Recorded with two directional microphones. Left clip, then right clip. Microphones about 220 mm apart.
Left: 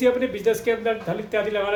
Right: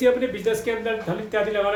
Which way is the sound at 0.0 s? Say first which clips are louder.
Even; 25° left (ahead or behind).